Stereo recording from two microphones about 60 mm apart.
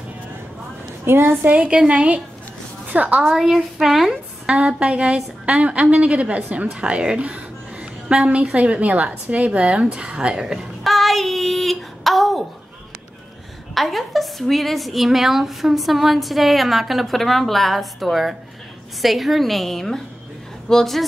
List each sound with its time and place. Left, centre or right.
1.0 s a woman's voice: right
1.5 s a woman's voice: centre
3.3 s a woman's voice: centre
4.1 s a woman's voice: centre
10.8 s child singing: centre
13.7 s a woman's voice: centre